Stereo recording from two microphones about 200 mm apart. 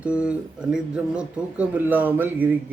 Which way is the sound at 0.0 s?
5° right (ahead or behind).